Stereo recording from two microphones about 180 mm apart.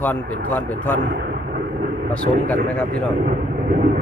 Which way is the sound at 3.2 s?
55° right (ahead or behind).